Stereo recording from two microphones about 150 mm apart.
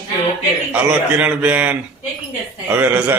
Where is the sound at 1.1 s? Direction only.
10° right (ahead or behind).